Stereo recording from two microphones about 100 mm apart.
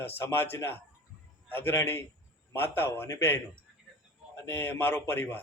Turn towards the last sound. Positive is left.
turn(degrees=25)  # may be behind; listen again after turning